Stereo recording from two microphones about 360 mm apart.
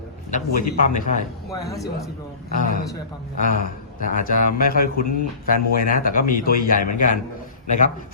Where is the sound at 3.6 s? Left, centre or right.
Left.